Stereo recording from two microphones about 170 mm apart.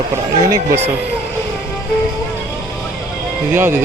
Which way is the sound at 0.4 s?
20° right (ahead or behind).